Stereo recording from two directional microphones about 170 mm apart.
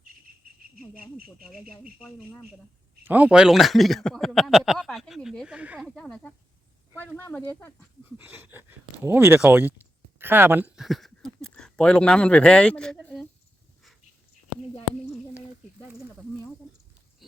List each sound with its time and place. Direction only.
0.6 s cricket: 60° right (ahead or behind)
1.5 s a man's voice: centre (ahead or behind)
3.0 s a man's voice: 10° right (ahead or behind)
5.9 s a man's voice: 5° left (ahead or behind)
8.2 s speech: 10° right (ahead or behind)